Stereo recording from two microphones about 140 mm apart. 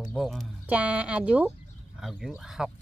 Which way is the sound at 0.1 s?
Centre (ahead or behind).